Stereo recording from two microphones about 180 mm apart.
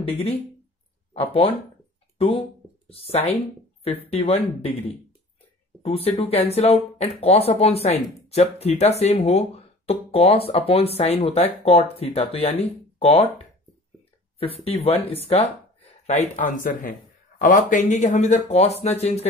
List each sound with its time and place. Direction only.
0.1 s speech: 35° left (ahead or behind)
2.1 s speech: 30° left (ahead or behind)
15.0 s speech: 35° left (ahead or behind)